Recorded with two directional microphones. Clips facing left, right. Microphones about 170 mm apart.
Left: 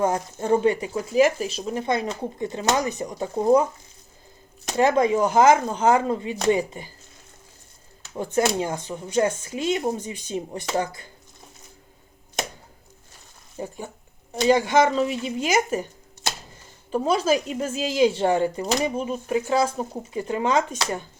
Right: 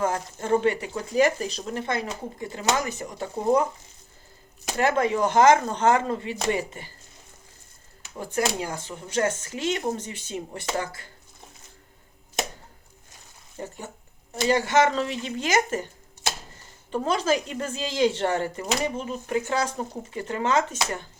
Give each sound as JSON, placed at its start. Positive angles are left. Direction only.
{"t": 0.0, "sound": "speech", "side_deg": 20}
{"t": 1.1, "sound": "speech", "side_deg": 5}
{"t": 1.6, "sound": "speech", "side_deg": 15}
{"t": 4.8, "sound": "speech", "side_deg": 15}
{"t": 8.2, "sound": "speech", "side_deg": 25}
{"t": 13.6, "sound": "speech", "side_deg": 15}
{"t": 16.9, "sound": "speech", "side_deg": 10}